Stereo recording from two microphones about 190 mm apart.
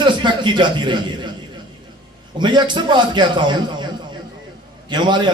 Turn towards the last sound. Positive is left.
turn(degrees=-25)  # may be behind; listen again after turning